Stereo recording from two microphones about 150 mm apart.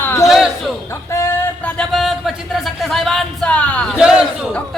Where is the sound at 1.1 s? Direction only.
20° left (ahead or behind).